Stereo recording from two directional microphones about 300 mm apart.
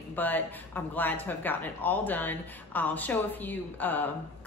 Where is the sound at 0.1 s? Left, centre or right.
Centre.